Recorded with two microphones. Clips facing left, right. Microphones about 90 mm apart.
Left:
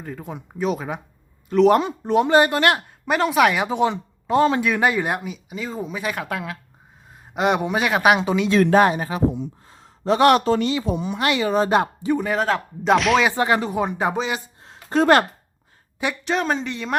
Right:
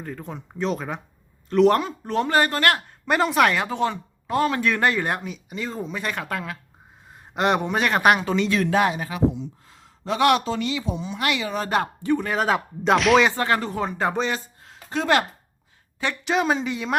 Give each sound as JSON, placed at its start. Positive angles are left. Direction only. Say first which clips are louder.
{"t": 0.0, "sound": "speech", "louder": "left 1 dB", "side_deg": 5}
{"t": 1.7, "sound": "speech", "louder": "left 5 dB", "side_deg": 20}
{"t": 3.1, "sound": "speech", "louder": "left 1 dB", "side_deg": 0}
{"t": 4.6, "sound": "speech", "louder": "left 2 dB", "side_deg": 10}
{"t": 8.7, "sound": "a man's voice", "louder": "left 5 dB", "side_deg": 40}
{"t": 10.9, "sound": "speech", "louder": "left 5 dB", "side_deg": 55}
{"t": 11.2, "sound": "speech", "louder": "left 6 dB", "side_deg": 35}
{"t": 12.3, "sound": "speech", "louder": "left 1 dB", "side_deg": 0}
{"t": 13.3, "sound": "speech", "louder": "left 3 dB", "side_deg": 15}
{"t": 14.6, "sound": "a sound", "louder": "left 8 dB", "side_deg": 35}
{"t": 16.2, "sound": "speech", "louder": "right 2 dB", "side_deg": -5}